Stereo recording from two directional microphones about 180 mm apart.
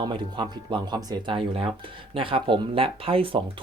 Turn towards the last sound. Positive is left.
turn(degrees=-30)  # may be behind; listen again after turning